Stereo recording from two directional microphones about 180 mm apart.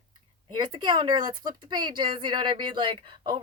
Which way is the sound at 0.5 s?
25° right (ahead or behind).